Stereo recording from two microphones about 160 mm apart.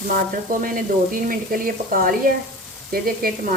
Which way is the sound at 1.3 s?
65° right (ahead or behind).